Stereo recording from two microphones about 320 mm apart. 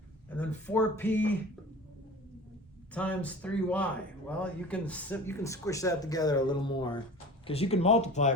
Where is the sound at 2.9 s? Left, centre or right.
Centre.